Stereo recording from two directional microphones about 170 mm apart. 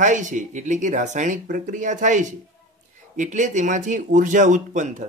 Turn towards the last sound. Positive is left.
turn(degrees=-45)  # may be behind; listen again after turning